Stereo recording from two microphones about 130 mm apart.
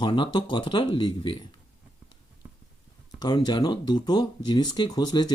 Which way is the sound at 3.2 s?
35° left (ahead or behind).